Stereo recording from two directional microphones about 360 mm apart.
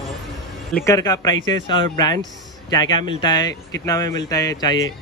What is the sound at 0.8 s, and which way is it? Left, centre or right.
Speech, centre.